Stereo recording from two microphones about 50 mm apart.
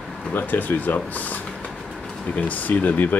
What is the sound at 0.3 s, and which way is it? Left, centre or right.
Speech, left.